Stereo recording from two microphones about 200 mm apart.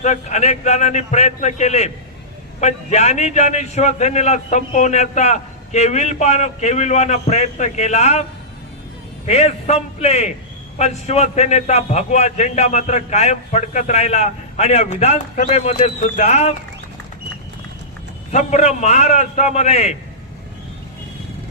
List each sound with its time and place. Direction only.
0.0 s a man's voice: 35° left (ahead or behind)
9.2 s a man's voice: 35° left (ahead or behind)
18.3 s a man's voice: 35° left (ahead or behind)